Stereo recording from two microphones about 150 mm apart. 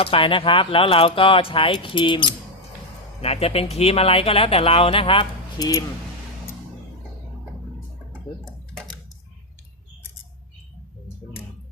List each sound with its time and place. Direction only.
0.0 s speech: 35° left (ahead or behind)
5.5 s speech: 25° left (ahead or behind)